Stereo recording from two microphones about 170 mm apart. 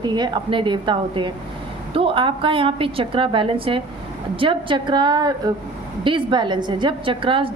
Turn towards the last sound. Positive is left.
turn(degrees=-30)  # may be behind; listen again after turning